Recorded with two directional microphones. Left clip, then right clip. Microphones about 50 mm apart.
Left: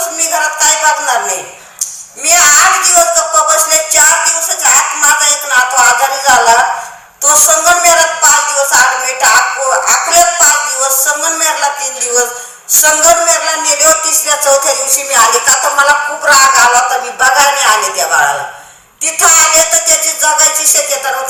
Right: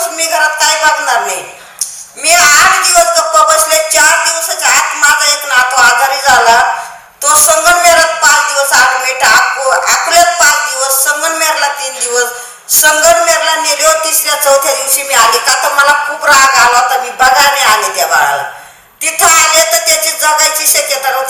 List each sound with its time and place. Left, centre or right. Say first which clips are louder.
0.0 s a sound: right 2 dB; right
0.6 s speech: right 1 dB; right
10.4 s music: right 2 dB; right
11.0 s speech: right 1 dB; right
12.8 s speech: right 2 dB; right